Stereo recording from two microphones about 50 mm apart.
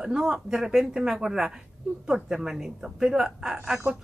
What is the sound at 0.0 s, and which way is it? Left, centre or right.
Speech, centre.